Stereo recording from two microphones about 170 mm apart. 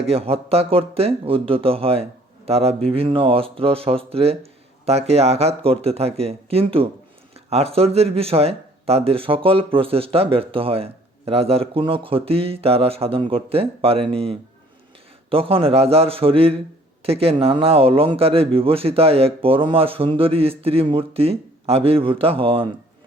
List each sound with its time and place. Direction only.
0.1 s speech: 35° right (ahead or behind)